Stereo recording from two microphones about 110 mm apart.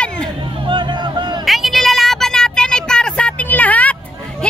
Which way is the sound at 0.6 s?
45° right (ahead or behind).